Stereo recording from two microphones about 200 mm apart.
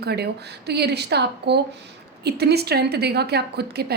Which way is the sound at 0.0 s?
55° right (ahead or behind).